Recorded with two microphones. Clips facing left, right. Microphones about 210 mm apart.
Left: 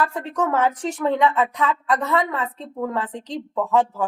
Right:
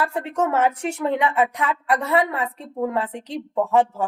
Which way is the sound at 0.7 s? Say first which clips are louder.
Left 1 dB; 10° right (ahead or behind).